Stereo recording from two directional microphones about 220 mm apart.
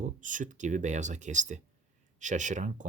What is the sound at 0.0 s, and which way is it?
Speech, 35° right (ahead or behind).